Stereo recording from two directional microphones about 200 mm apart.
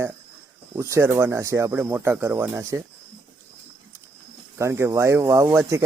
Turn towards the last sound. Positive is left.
turn(degrees=-15)  # may be behind; listen again after turning